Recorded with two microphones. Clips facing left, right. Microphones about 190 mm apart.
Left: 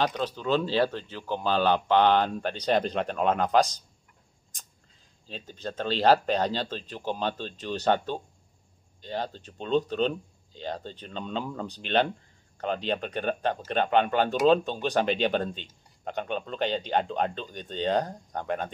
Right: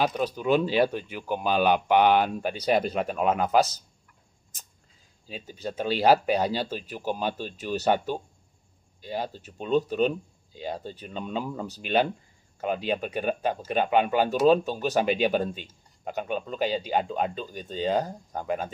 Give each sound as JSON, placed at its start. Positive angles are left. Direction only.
{"t": 0.0, "sound": "speech", "side_deg": -10}
{"t": 4.5, "sound": "a sound", "side_deg": -5}
{"t": 5.2, "sound": "speech", "side_deg": -10}